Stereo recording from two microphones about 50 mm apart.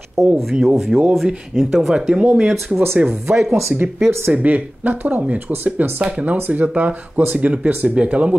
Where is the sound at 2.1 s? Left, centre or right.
Right.